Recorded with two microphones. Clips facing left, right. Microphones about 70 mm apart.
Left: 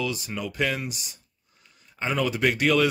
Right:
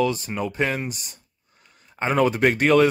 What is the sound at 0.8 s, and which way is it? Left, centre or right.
A man's voice, right.